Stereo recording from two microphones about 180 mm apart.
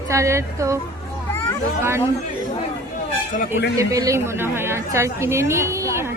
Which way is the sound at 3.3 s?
50° left (ahead or behind).